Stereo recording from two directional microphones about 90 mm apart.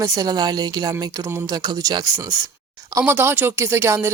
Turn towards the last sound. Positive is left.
turn(degrees=-30)  # may be behind; listen again after turning